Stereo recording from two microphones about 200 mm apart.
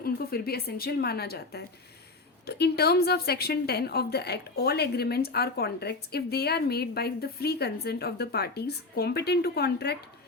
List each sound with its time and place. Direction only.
0.0 s a woman's voice: 50° left (ahead or behind)